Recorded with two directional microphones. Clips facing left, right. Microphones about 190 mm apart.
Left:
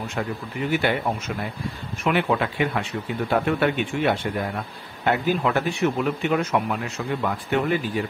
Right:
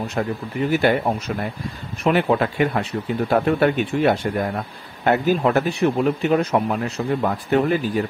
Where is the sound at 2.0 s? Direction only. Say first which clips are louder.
Right 4 dB; 40° right (ahead or behind).